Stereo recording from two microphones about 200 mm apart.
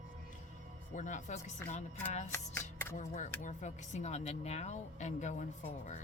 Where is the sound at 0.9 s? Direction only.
40° left (ahead or behind).